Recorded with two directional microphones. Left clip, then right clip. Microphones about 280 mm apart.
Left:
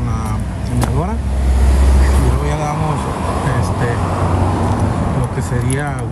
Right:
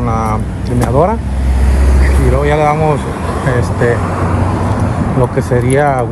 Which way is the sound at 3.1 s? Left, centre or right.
Left.